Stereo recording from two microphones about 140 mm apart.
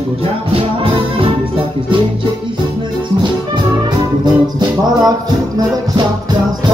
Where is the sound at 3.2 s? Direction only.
30° right (ahead or behind).